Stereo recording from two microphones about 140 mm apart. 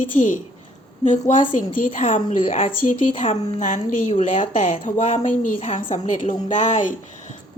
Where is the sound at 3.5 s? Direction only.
65° left (ahead or behind).